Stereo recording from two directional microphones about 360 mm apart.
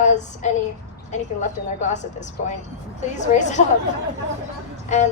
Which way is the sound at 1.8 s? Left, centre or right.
Centre.